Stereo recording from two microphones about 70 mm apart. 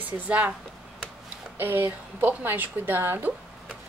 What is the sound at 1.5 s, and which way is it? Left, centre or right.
A woman's voice, right.